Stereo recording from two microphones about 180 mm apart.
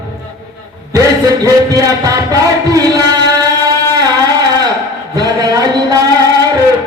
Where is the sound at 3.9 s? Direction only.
20° right (ahead or behind).